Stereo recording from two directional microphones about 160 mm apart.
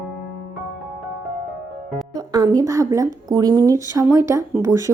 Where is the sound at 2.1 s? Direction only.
25° right (ahead or behind).